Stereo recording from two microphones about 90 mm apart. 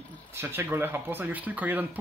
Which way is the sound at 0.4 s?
25° right (ahead or behind).